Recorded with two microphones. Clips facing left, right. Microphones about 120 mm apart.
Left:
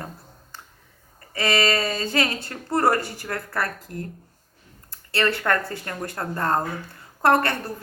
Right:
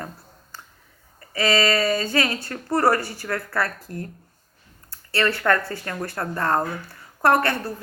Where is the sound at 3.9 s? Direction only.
30° right (ahead or behind).